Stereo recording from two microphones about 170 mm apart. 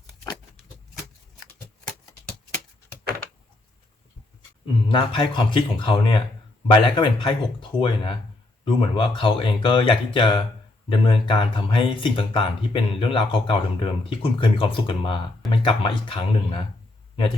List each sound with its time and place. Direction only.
4.9 s speech: 30° left (ahead or behind)